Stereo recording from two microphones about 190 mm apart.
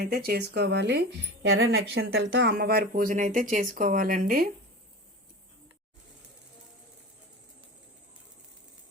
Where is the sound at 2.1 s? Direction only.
60° right (ahead or behind).